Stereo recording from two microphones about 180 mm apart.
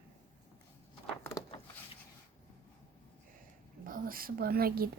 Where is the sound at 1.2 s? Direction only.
15° left (ahead or behind).